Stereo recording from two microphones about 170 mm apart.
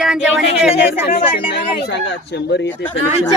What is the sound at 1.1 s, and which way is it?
Speech, 30° left (ahead or behind).